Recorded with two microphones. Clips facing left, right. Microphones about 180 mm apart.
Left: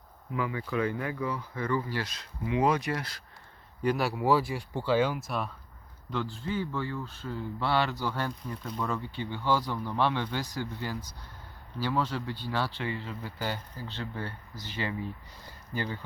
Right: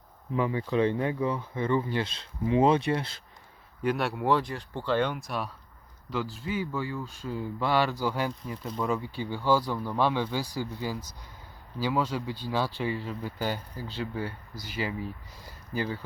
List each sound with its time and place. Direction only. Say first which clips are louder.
0.3 s speech: right 4 dB; 25° right (ahead or behind)
3.8 s speech: even; centre (ahead or behind)
6.3 s speech: right 1 dB; 10° right (ahead or behind)